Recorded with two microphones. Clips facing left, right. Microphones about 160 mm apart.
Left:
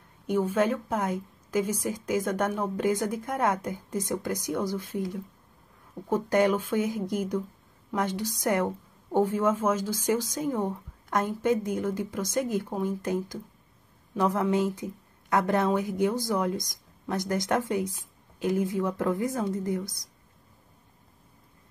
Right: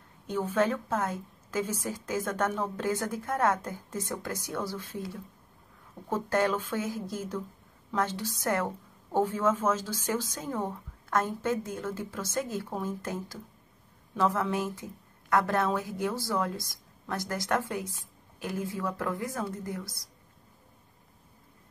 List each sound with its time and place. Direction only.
0.3 s a woman's voice: 10° left (ahead or behind)